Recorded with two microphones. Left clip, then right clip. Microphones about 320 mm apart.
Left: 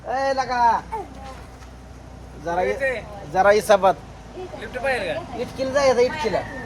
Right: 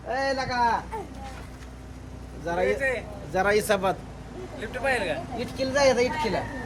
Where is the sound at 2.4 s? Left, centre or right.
Centre.